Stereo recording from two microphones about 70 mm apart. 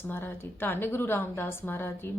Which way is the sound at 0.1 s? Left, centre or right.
Left.